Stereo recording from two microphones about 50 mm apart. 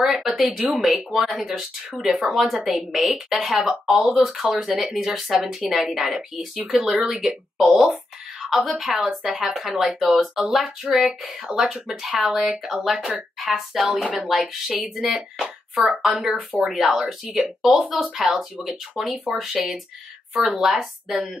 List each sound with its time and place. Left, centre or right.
0.0 s speech: centre
17.6 s speech: centre